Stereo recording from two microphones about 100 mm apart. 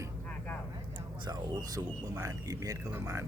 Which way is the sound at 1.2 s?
40° right (ahead or behind).